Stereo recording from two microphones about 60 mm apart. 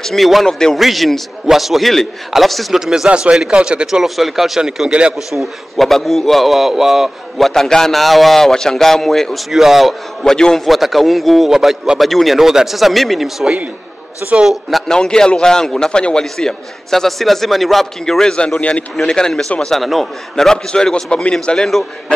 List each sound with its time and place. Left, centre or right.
0.0 s a man's voice: centre
0.7 s a man's voice: centre
3.1 s a man's voice: centre
3.8 s speech: centre
5.8 s a man's voice: centre
10.2 s a man's voice: centre
14.2 s a man's voice: centre
14.9 s a man's voice: centre
18.9 s a man's voice: centre
19.8 s a man's voice: centre